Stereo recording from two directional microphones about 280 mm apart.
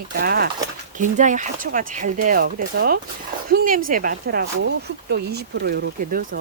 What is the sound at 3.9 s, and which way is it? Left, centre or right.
Speech, right.